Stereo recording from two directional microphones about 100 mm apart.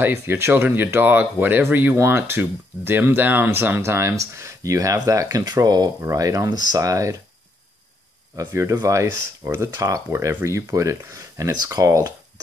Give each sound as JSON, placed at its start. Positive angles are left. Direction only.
{"t": 0.0, "sound": "speech", "side_deg": -25}
{"t": 8.5, "sound": "speech", "side_deg": -30}